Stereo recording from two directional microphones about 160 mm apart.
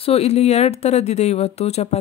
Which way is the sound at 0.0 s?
40° left (ahead or behind).